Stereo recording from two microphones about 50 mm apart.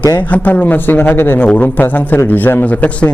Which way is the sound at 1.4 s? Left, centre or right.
Left.